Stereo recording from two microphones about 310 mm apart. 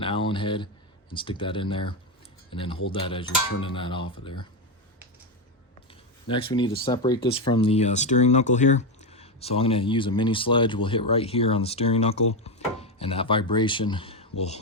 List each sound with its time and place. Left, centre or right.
0.0 s a sound: centre
1.1 s speech: centre
5.9 s speech: centre